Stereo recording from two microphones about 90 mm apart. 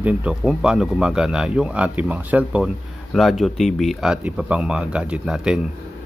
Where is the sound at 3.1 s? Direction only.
Centre (ahead or behind).